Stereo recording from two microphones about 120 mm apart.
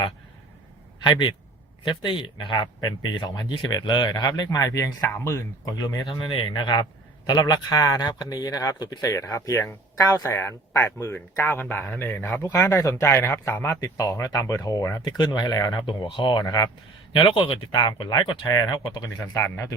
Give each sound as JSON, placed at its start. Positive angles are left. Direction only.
{"t": 2.0, "sound": "speech", "side_deg": 40}
{"t": 15.9, "sound": "speech", "side_deg": 40}
{"t": 18.8, "sound": "speech", "side_deg": 45}
{"t": 19.0, "sound": "speech", "side_deg": 25}